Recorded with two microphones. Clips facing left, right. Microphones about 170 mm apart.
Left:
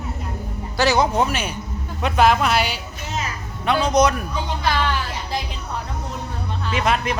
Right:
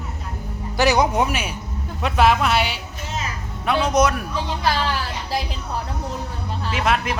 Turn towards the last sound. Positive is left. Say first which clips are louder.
# left 1 dB
turn(degrees=-5)  # may be behind; listen again after turning